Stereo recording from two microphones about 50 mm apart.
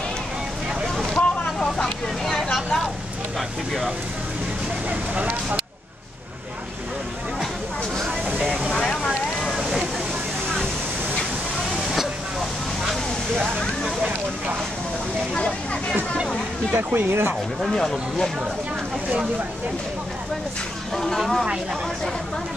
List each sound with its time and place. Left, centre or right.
1.1 s vehicle: centre
3.3 s speech: centre
5.1 s speech: right
8.9 s vehicle: centre
9.6 s a sound: centre
15.3 s a sound: left
16.7 s speech: right
17.6 s speech: centre
20.9 s speech: centre